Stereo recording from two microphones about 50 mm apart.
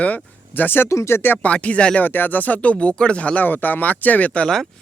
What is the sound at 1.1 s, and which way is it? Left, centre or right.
Speech, left.